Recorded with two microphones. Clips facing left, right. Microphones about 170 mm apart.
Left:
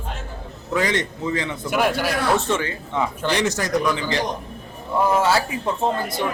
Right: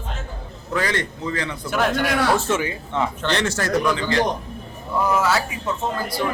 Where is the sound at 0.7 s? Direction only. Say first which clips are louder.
Left 2 dB; 20° left (ahead or behind); by 2.6 s centre (ahead or behind).